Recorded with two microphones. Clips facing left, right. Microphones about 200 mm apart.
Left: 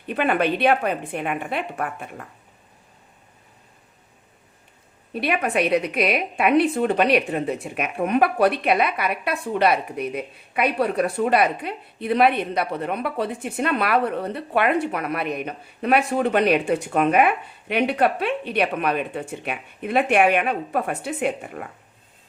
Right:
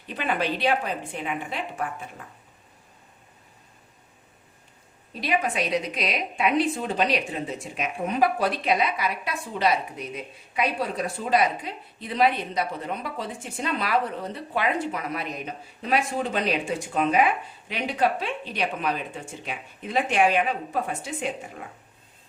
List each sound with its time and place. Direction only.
0.1 s a woman's voice: 60° left (ahead or behind)
5.1 s a woman's voice: 60° left (ahead or behind)